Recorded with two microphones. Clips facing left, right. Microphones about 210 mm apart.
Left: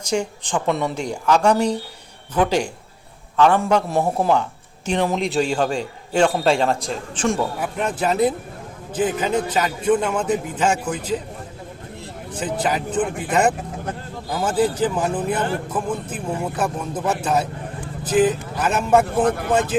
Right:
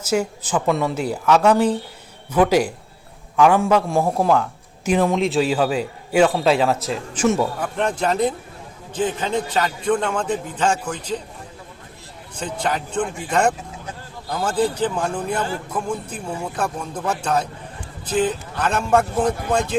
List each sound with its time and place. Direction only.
0.0 s a man's voice: 5° right (ahead or behind)
7.6 s a man's voice: 5° left (ahead or behind)
12.4 s a man's voice: 5° left (ahead or behind)
19.2 s speech: 55° left (ahead or behind)
19.5 s a man's voice: 5° left (ahead or behind)